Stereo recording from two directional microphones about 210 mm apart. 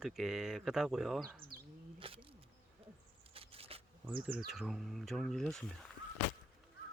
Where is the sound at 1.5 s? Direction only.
45° right (ahead or behind).